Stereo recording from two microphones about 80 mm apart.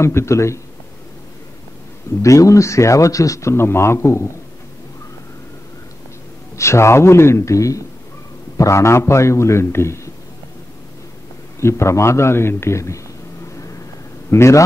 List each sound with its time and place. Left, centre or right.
0.0 s speech: left
2.2 s speech: left
6.5 s speech: left
11.6 s speech: left
14.3 s speech: left